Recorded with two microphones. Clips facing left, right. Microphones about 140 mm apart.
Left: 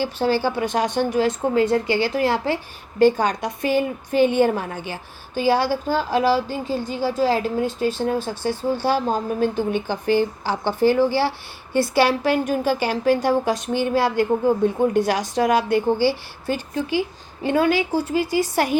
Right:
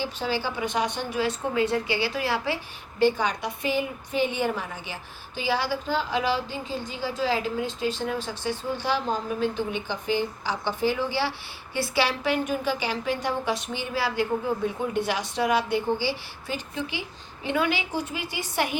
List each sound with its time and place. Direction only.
0.2 s a woman's voice: 45° left (ahead or behind)